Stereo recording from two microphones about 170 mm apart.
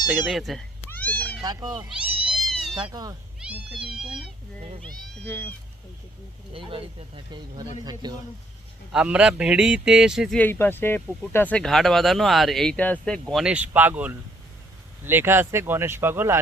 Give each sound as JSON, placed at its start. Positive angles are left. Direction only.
{"t": 0.3, "sound": "speech", "side_deg": 0}
{"t": 0.9, "sound": "cat", "side_deg": 10}
{"t": 1.4, "sound": "speech", "side_deg": -20}
{"t": 1.9, "sound": "cat", "side_deg": -5}
{"t": 2.8, "sound": "speech", "side_deg": -20}
{"t": 3.4, "sound": "speech", "side_deg": -5}
{"t": 5.2, "sound": "speech", "side_deg": 10}
{"t": 6.5, "sound": "speech", "side_deg": -30}
{"t": 8.0, "sound": "speech", "side_deg": -25}
{"t": 8.9, "sound": "speech", "side_deg": -5}
{"t": 10.3, "sound": "speech", "side_deg": 10}
{"t": 13.3, "sound": "speech", "side_deg": -5}